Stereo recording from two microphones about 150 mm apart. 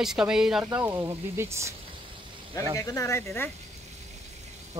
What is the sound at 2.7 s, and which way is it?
Speech, 20° left (ahead or behind).